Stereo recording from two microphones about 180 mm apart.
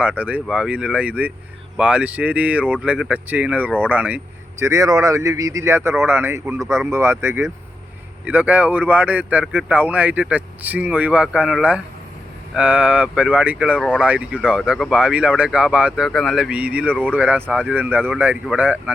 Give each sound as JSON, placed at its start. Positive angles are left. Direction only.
{"t": 0.0, "sound": "speech", "side_deg": -10}
{"t": 13.7, "sound": "speech", "side_deg": 5}
{"t": 14.0, "sound": "speech", "side_deg": -5}